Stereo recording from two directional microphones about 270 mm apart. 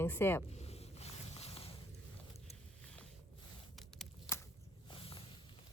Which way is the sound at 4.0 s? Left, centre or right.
Centre.